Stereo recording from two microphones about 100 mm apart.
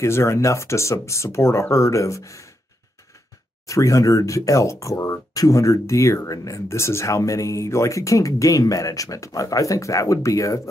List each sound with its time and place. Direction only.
0.0 s speech: 30° left (ahead or behind)
3.6 s speech: 30° left (ahead or behind)